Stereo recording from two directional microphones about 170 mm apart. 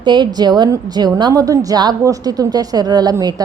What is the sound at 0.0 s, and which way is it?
A woman's voice, 25° right (ahead or behind).